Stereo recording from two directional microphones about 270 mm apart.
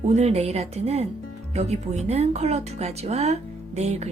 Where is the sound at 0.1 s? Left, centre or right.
Right.